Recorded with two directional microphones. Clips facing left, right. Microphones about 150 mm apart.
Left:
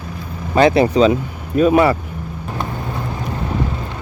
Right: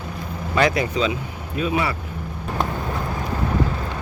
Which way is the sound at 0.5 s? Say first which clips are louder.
Left 8 dB; 30° left (ahead or behind).